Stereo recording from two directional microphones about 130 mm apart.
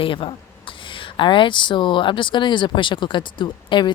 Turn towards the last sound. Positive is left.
turn(degrees=35)  # may be behind; listen again after turning